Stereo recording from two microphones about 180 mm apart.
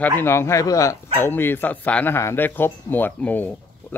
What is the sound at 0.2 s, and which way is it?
Speech, 15° left (ahead or behind).